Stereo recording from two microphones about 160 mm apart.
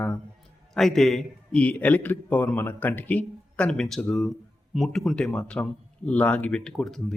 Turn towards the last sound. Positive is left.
turn(degrees=5)  # may be behind; listen again after turning